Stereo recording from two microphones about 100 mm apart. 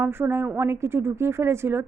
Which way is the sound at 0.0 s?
25° right (ahead or behind).